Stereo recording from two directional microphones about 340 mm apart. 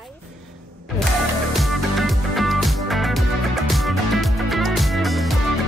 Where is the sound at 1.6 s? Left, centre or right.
Centre.